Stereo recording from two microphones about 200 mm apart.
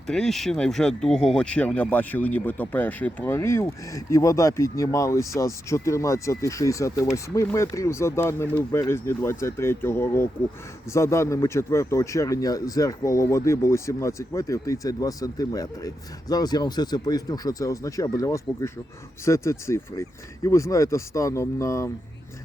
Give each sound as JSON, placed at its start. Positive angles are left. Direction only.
{"t": 0.1, "sound": "speech", "side_deg": 0}